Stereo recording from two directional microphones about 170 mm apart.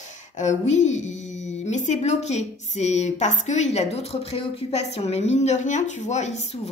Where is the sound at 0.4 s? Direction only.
45° left (ahead or behind).